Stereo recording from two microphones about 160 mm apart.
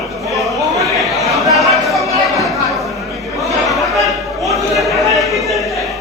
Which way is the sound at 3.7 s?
Centre (ahead or behind).